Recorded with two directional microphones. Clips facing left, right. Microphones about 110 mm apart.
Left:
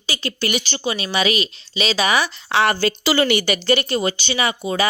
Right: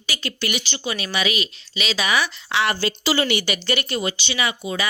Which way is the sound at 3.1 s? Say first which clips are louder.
Left 3 dB; 55° left (ahead or behind).